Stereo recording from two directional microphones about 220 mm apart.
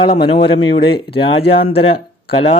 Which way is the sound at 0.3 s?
25° left (ahead or behind).